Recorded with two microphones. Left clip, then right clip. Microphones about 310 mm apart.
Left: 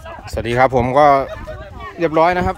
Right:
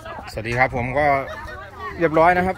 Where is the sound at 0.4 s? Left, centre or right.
Centre.